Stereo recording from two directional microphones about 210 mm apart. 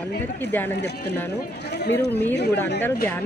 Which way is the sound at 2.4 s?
55° left (ahead or behind).